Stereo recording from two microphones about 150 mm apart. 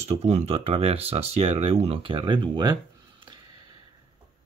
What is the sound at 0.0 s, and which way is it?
Speech, 45° right (ahead or behind).